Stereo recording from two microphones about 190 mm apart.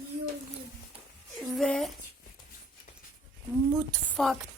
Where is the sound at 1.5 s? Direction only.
Centre (ahead or behind).